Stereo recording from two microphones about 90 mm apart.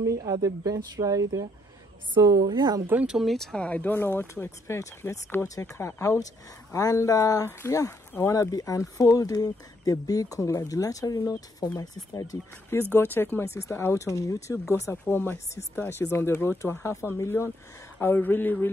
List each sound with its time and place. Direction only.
0.0 s a woman's voice: 40° right (ahead or behind)
3.1 s speech: centre (ahead or behind)
3.5 s speech: 15° left (ahead or behind); by 12.4 s 40° left (ahead or behind)
12.9 s speech: 25° left (ahead or behind)
14.8 s speech: 25° left (ahead or behind)